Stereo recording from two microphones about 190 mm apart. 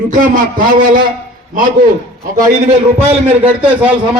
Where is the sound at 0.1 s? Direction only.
45° right (ahead or behind).